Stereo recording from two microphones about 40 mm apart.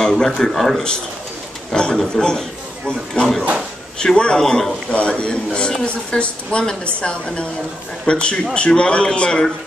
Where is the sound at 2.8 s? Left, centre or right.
Left.